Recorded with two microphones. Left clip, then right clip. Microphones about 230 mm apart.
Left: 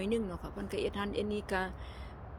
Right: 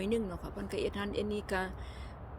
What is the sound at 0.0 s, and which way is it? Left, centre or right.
Speech, centre.